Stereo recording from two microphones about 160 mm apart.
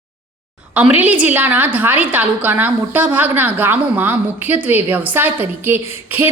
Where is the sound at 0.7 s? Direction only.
10° right (ahead or behind).